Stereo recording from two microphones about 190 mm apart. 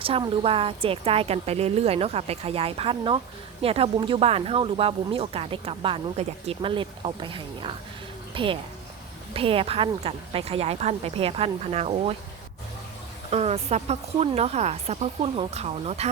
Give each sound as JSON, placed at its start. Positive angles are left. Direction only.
{"t": 0.0, "sound": "speech", "side_deg": -30}
{"t": 8.3, "sound": "music", "side_deg": -25}
{"t": 9.3, "sound": "speech", "side_deg": -30}
{"t": 13.3, "sound": "speech", "side_deg": -35}